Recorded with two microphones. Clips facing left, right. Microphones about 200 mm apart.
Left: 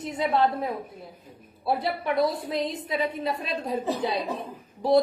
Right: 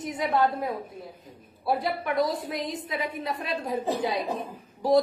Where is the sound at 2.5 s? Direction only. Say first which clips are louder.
Left 3 dB; 25° left (ahead or behind).